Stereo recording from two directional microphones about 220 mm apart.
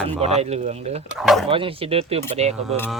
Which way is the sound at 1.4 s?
25° right (ahead or behind).